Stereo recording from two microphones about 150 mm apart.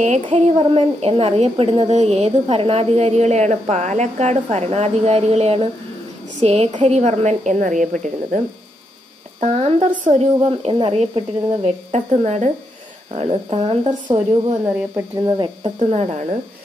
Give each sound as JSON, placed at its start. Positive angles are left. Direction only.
{"t": 0.0, "sound": "a woman's voice", "side_deg": -50}
{"t": 9.4, "sound": "a woman's voice", "side_deg": -45}
{"t": 14.6, "sound": "speech", "side_deg": -15}
{"t": 15.2, "sound": "insect", "side_deg": -30}
{"t": 15.9, "sound": "a woman's voice", "side_deg": -50}